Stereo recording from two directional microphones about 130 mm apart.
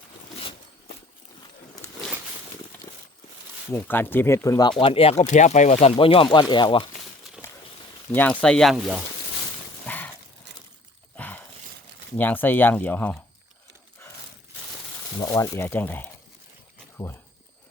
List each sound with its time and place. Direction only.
3.7 s speech: 15° left (ahead or behind)
4.8 s speech: 45° left (ahead or behind)
5.2 s speech: 65° left (ahead or behind); by 6.8 s 40° left (ahead or behind)
8.1 s speech: 10° left (ahead or behind)
9.8 s dog: 10° left (ahead or behind)
11.2 s a sound: 10° left (ahead or behind)
12.1 s speech: 15° left (ahead or behind)
15.2 s speech: 25° left (ahead or behind)